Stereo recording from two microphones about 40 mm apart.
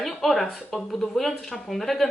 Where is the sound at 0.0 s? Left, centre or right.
Centre.